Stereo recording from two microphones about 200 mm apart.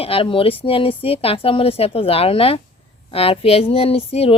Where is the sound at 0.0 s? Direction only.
25° left (ahead or behind).